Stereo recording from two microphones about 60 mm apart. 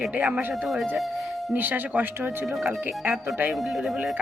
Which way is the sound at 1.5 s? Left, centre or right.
Right.